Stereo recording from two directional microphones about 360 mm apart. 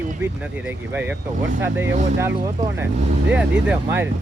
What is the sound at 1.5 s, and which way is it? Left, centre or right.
Speech, right.